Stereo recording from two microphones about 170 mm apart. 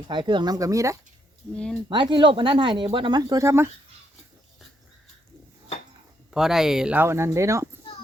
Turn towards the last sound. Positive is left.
turn(degrees=-15)  # may be behind; listen again after turning